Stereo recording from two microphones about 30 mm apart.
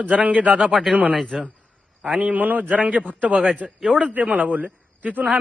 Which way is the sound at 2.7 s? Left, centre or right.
Right.